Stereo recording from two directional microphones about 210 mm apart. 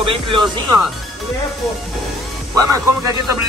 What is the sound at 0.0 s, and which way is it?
Speech, 25° right (ahead or behind).